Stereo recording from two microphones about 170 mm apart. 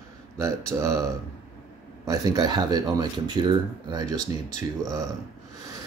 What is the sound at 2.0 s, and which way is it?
Speech, 20° right (ahead or behind).